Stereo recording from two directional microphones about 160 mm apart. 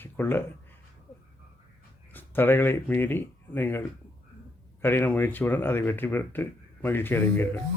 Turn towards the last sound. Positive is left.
turn(degrees=15)  # may be behind; listen again after turning